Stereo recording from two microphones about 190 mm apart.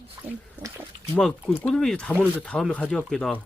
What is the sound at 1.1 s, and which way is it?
Speech, 5° left (ahead or behind).